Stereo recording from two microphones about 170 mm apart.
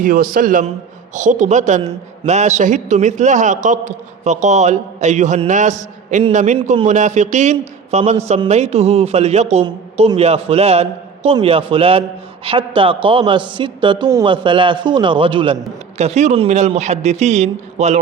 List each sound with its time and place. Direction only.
0.0 s a man's voice: 55° right (ahead or behind); by 15.5 s 30° right (ahead or behind)
16.0 s a man's voice: 40° right (ahead or behind)